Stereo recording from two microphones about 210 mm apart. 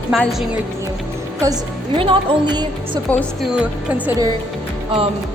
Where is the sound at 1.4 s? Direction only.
20° right (ahead or behind).